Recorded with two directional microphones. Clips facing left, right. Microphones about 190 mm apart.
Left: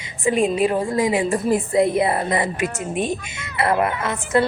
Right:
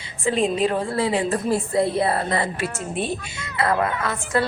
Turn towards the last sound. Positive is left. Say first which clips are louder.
# left 3 dB
turn(degrees=20)  # may be behind; listen again after turning